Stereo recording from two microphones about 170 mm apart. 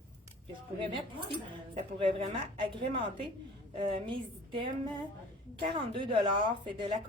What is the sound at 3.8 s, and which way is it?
A woman's voice, 30° right (ahead or behind).